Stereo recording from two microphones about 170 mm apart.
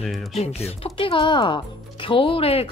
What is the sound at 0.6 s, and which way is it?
Speech, 35° left (ahead or behind).